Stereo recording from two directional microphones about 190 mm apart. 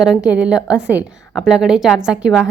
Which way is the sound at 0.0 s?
5° right (ahead or behind).